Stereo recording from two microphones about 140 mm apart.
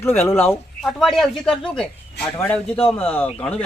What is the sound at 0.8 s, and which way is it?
Speech, centre (ahead or behind).